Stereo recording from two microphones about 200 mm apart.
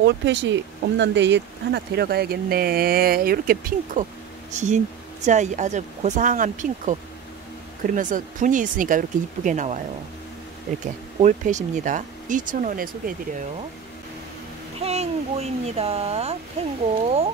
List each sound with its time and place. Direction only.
0.0 s speech: 60° right (ahead or behind)
4.6 s speech: 35° right (ahead or behind)
11.1 s speech: 35° right (ahead or behind)
14.8 s speech: 30° right (ahead or behind)